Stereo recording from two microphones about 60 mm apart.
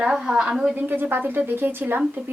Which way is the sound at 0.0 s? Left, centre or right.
Centre.